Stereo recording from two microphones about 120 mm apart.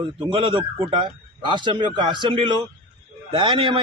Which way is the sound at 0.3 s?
45° right (ahead or behind).